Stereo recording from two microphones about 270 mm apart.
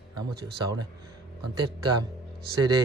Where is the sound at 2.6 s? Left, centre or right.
Centre.